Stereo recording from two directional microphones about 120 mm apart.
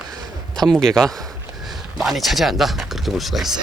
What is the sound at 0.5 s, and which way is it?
Speech, 5° left (ahead or behind).